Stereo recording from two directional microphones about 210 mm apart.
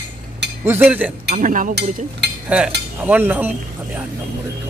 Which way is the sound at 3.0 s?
10° right (ahead or behind).